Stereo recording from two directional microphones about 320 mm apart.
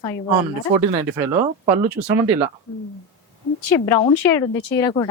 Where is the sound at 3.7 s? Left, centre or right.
Centre.